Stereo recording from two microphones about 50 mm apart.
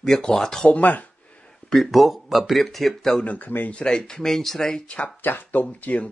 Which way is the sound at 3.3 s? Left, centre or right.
Left.